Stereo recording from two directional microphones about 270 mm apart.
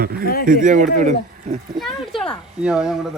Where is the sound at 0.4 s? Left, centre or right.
Right.